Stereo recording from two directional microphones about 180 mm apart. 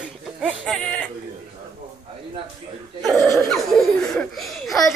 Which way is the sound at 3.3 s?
Centre (ahead or behind).